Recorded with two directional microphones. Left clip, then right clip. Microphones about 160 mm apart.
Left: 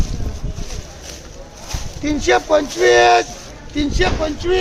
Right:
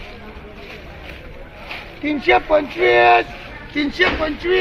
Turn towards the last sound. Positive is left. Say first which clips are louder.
# even
turn(degrees=-5)  # may be behind; listen again after turning